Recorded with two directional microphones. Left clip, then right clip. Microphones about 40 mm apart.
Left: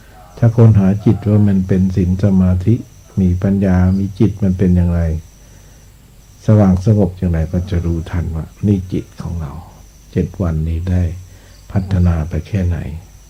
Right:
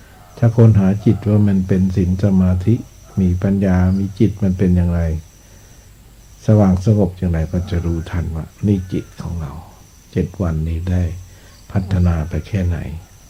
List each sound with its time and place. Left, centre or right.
0.3 s speech: right
1.6 s speech: centre
3.7 s speech: right
6.4 s speech: right